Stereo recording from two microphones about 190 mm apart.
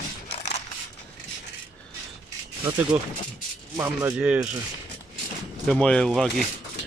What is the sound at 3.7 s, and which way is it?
Speech, 15° right (ahead or behind).